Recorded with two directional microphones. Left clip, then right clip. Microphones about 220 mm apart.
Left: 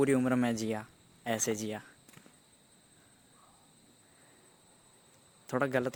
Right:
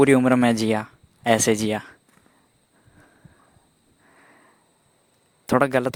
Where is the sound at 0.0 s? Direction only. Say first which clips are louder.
Right 12 dB; 45° right (ahead or behind).